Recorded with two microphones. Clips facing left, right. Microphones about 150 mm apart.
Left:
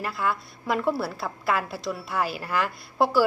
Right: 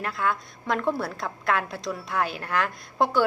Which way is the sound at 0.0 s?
5° left (ahead or behind).